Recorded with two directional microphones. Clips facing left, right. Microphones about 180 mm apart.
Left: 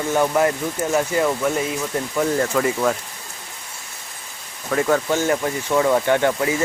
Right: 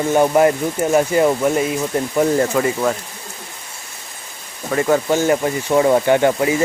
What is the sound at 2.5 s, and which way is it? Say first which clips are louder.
Speech: right 2 dB; 5° right (ahead or behind).